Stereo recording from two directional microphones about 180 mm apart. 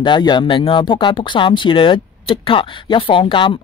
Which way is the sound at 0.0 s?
25° left (ahead or behind).